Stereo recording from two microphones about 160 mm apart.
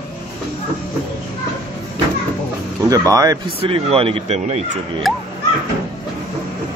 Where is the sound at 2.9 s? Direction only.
20° right (ahead or behind).